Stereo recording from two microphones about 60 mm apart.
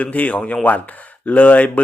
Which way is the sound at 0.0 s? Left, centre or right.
Left.